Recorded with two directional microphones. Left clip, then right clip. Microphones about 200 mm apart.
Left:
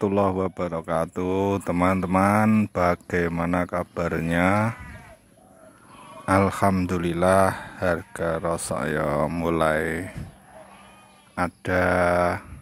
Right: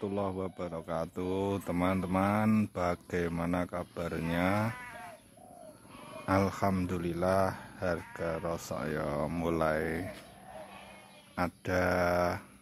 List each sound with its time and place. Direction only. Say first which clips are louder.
0.0 s speech: left 12 dB; 25° left (ahead or behind)
6.2 s speech: left 9 dB; 20° left (ahead or behind)
11.3 s speech: left 8 dB; 15° left (ahead or behind)